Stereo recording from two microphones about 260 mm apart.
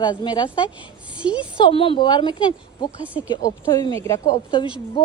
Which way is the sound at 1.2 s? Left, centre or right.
Centre.